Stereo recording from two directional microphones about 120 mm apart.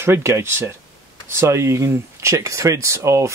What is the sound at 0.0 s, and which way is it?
Speech, 20° right (ahead or behind).